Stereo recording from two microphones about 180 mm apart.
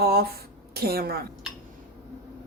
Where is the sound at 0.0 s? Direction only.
60° right (ahead or behind).